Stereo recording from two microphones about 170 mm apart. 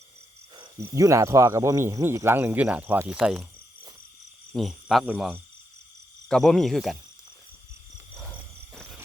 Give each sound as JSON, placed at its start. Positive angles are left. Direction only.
{"t": 0.8, "sound": "speech", "side_deg": -15}
{"t": 4.5, "sound": "speech", "side_deg": 0}